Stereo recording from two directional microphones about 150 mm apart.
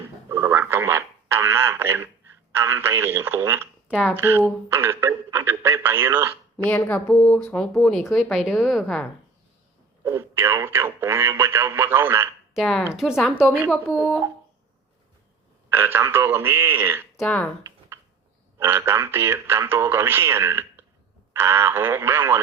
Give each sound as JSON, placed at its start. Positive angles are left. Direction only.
{"t": 0.3, "sound": "radio", "side_deg": -15}
{"t": 2.5, "sound": "speech", "side_deg": -15}
{"t": 6.7, "sound": "a woman's voice", "side_deg": 10}
{"t": 10.0, "sound": "speech", "side_deg": -15}
{"t": 12.5, "sound": "a woman's voice", "side_deg": 0}
{"t": 15.7, "sound": "speech", "side_deg": -15}
{"t": 17.2, "sound": "speech", "side_deg": 10}
{"t": 17.6, "sound": "a sound", "side_deg": -15}
{"t": 18.6, "sound": "speech", "side_deg": -15}